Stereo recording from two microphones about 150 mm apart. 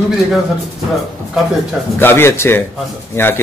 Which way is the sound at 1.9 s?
15° left (ahead or behind).